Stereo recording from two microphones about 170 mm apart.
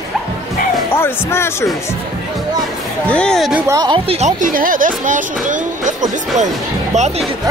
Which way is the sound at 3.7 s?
25° right (ahead or behind).